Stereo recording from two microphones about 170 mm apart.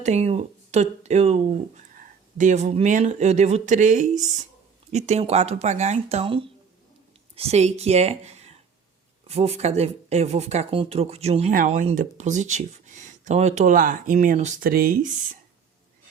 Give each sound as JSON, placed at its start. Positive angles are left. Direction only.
{"t": 0.0, "sound": "speech", "side_deg": -40}